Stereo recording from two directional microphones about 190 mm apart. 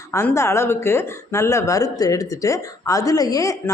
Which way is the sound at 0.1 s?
15° left (ahead or behind).